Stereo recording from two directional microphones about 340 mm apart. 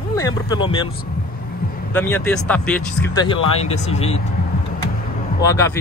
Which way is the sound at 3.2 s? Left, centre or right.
Centre.